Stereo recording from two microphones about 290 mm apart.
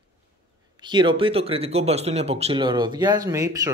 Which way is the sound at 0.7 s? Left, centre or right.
Centre.